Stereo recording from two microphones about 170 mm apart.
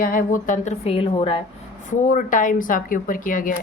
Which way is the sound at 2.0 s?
50° left (ahead or behind).